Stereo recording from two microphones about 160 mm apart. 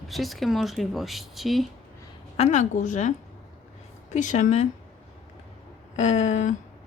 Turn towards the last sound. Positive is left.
turn(degrees=45)  # may be behind; listen again after turning